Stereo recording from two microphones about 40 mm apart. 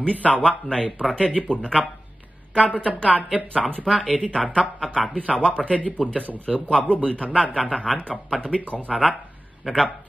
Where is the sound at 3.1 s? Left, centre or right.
Right.